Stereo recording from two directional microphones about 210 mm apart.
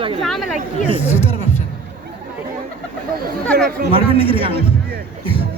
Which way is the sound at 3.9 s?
25° right (ahead or behind).